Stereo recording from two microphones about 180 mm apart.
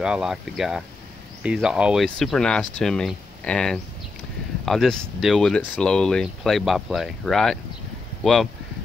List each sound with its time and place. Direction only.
0.0 s speech: 5° right (ahead or behind)